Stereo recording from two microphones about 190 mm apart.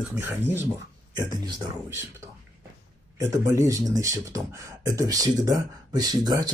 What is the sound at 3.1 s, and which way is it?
Speech, 15° right (ahead or behind).